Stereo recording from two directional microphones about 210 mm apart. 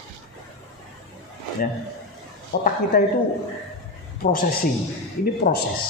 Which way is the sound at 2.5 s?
45° left (ahead or behind).